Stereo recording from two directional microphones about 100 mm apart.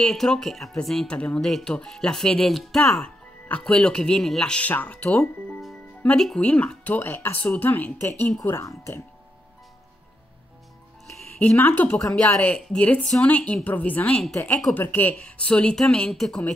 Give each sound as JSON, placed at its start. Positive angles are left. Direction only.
{"t": 0.0, "sound": "speech", "side_deg": 5}
{"t": 11.3, "sound": "speech", "side_deg": 15}
{"t": 12.5, "sound": "speech", "side_deg": 5}